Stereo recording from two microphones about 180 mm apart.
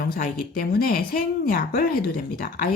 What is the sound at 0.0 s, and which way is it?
Speech, 55° left (ahead or behind).